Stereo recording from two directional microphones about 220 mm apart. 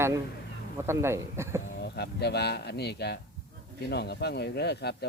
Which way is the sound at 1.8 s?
50° left (ahead or behind).